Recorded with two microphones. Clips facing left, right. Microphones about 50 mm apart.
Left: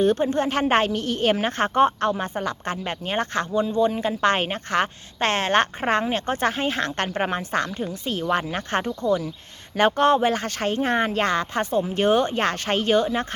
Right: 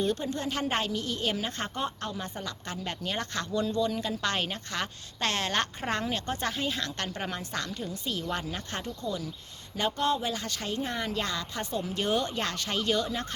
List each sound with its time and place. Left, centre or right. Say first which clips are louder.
0.0 s a woman's voice: left 10 dB; left
3.8 s a woman's voice: left 8 dB; left